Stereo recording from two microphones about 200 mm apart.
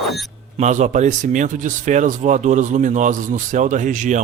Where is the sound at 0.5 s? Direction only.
35° right (ahead or behind).